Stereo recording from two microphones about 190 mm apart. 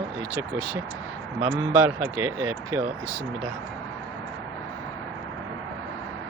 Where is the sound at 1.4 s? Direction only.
15° right (ahead or behind).